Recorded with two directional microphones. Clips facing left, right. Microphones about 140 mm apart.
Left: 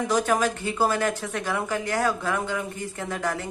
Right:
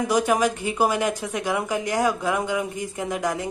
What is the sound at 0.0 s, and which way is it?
A woman's voice, 10° right (ahead or behind).